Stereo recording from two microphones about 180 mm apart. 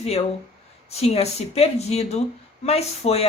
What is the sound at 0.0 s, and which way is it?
Speech, 35° left (ahead or behind).